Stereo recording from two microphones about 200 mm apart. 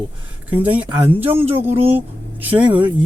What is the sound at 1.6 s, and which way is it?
Speech, 30° right (ahead or behind).